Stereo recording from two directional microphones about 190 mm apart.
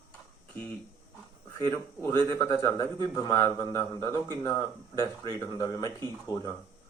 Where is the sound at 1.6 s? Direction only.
15° left (ahead or behind).